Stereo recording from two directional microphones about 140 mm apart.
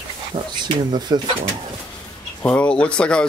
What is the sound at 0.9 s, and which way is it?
Speech, 30° right (ahead or behind).